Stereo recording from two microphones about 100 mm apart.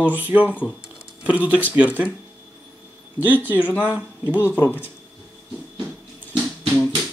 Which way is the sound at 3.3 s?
20° right (ahead or behind).